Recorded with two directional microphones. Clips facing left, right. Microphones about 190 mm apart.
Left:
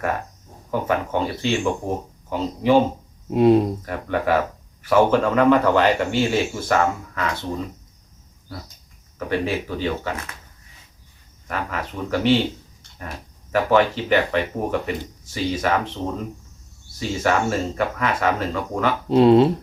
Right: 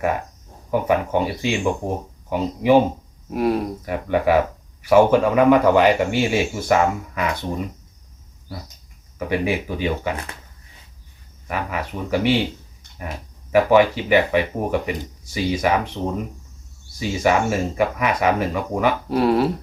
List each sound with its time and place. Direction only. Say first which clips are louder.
0.7 s speech: right 3 dB; 10° right (ahead or behind)
3.2 s speech: left 5 dB; 25° left (ahead or behind)
3.8 s speech: right 3 dB; 10° right (ahead or behind)
9.1 s speech: right 1 dB; 10° right (ahead or behind)
11.4 s speech: right 1 dB; 10° right (ahead or behind)
13.5 s speech: right 3 dB; 10° right (ahead or behind)
19.0 s speech: left 8 dB; 25° left (ahead or behind)